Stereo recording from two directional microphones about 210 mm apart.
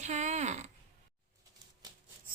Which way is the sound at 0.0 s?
35° right (ahead or behind).